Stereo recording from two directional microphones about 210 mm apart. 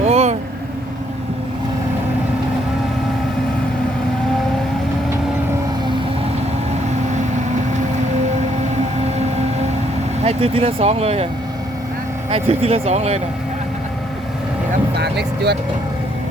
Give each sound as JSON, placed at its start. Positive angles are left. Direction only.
{"t": 0.0, "sound": "vehicle", "side_deg": -30}
{"t": 10.2, "sound": "speech", "side_deg": -30}
{"t": 12.3, "sound": "speech", "side_deg": -30}
{"t": 14.9, "sound": "vehicle", "side_deg": -50}